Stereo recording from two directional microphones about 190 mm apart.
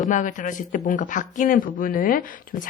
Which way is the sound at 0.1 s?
40° left (ahead or behind).